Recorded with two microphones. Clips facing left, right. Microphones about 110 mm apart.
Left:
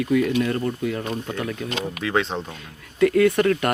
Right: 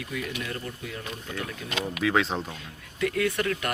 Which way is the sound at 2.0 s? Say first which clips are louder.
Left 1 dB; centre (ahead or behind).